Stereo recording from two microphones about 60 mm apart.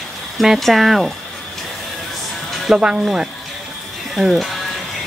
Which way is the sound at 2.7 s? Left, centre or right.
Centre.